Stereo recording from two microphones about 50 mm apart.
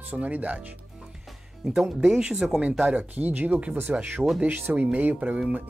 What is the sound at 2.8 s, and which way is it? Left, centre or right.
Speech, right.